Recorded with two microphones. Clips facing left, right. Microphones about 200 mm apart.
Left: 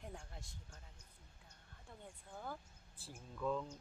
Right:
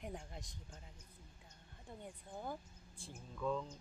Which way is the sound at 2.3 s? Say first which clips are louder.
Right 3 dB; 20° right (ahead or behind).